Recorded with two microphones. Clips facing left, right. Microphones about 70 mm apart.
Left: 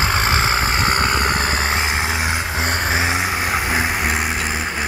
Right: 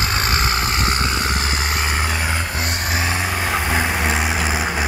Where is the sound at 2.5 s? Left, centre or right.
Left; by 4.5 s centre.